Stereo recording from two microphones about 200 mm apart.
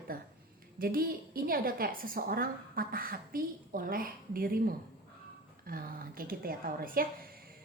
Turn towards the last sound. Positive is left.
turn(degrees=-45)  # may be behind; listen again after turning